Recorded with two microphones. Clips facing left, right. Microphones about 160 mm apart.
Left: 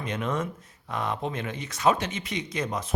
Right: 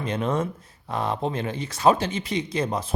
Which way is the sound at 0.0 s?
30° right (ahead or behind).